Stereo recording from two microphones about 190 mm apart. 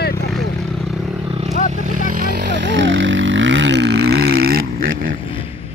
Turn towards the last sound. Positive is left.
turn(degrees=-50)  # may be behind; listen again after turning